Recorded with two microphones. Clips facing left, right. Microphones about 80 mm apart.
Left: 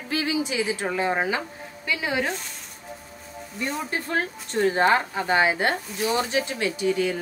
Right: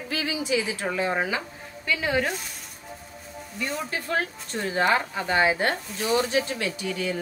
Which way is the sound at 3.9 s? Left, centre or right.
Left.